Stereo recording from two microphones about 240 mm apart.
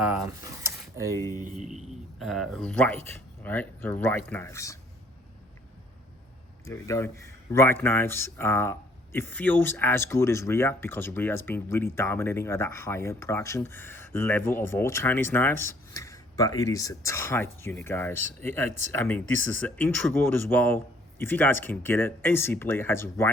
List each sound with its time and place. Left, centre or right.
0.7 s a sound: centre
1.1 s speech: centre
1.5 s speech: right
2.1 s speech: centre
6.7 s speech: centre